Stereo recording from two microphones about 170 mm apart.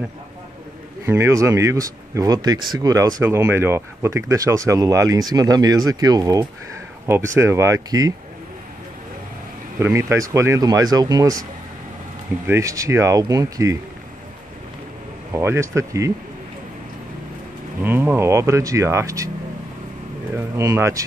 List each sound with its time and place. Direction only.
1.0 s speech: 15° right (ahead or behind)
9.8 s speech: 15° right (ahead or behind)
12.4 s speech: 15° right (ahead or behind)
15.3 s speech: 15° right (ahead or behind)
17.8 s speech: 15° right (ahead or behind)
20.3 s speech: 15° right (ahead or behind)